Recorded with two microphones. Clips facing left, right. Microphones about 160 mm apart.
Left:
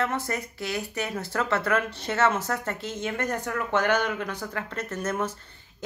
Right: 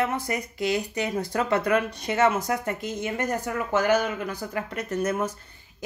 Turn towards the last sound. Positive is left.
turn(degrees=-10)  # may be behind; listen again after turning